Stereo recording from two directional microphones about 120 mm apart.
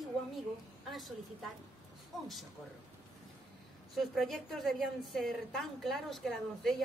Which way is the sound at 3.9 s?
Centre (ahead or behind).